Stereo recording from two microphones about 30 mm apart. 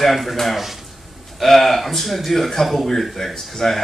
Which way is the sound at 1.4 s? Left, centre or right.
Centre.